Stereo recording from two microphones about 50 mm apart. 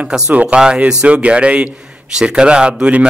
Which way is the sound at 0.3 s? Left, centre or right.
Right.